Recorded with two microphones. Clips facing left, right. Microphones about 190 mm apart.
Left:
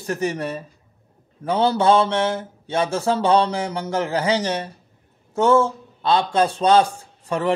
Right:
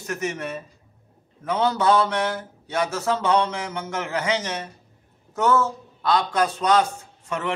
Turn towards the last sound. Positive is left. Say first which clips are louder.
# left 6 dB
turn(degrees=35)  # may be behind; listen again after turning